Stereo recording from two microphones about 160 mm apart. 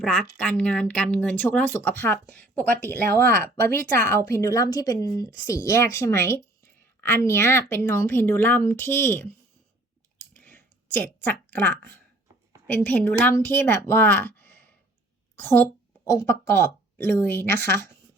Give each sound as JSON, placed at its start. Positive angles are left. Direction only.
{"t": 0.0, "sound": "a woman's voice", "side_deg": 5}
{"t": 10.3, "sound": "a sound", "side_deg": 10}
{"t": 12.6, "sound": "a woman's voice", "side_deg": 10}